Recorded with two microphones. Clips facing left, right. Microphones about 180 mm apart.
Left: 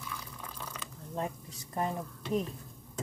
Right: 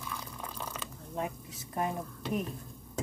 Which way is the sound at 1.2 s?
10° right (ahead or behind).